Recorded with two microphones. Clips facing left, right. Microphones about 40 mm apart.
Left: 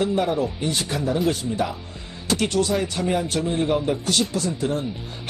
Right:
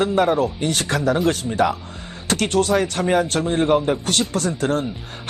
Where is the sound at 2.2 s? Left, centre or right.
Right.